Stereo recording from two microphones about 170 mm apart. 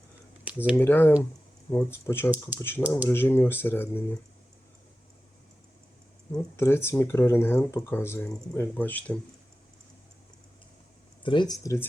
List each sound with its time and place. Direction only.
0.5 s a sound: 5° right (ahead or behind)
0.8 s speech: 10° left (ahead or behind)
6.3 s speech: 15° left (ahead or behind)
11.2 s speech: 30° left (ahead or behind)